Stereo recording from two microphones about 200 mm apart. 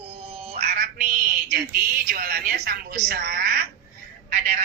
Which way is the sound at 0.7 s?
45° right (ahead or behind).